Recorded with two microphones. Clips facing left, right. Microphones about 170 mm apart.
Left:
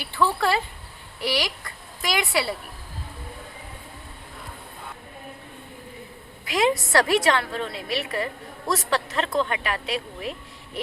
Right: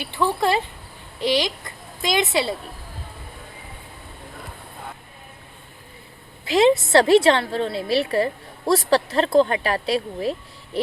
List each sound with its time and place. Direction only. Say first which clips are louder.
0.0 s a child's voice: right 2 dB; 20° right (ahead or behind)
6.4 s a woman's voice: right 6 dB; 25° right (ahead or behind)